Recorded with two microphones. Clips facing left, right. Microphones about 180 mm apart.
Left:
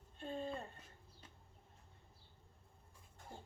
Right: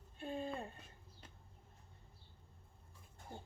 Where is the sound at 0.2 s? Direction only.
10° right (ahead or behind).